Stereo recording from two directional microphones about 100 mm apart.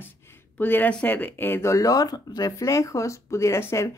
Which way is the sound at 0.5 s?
20° left (ahead or behind).